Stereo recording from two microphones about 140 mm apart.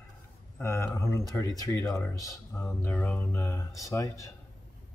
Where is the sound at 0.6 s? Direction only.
20° left (ahead or behind).